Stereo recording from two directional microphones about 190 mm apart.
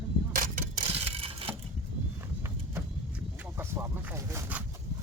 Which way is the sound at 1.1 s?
30° right (ahead or behind).